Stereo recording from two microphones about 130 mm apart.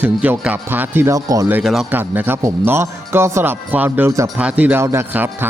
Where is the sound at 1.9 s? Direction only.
15° right (ahead or behind).